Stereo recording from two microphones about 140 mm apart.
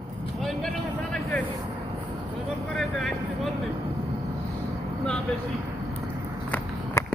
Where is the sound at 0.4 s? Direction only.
5° left (ahead or behind).